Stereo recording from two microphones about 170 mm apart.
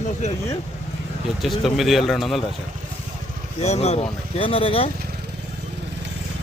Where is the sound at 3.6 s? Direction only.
40° left (ahead or behind).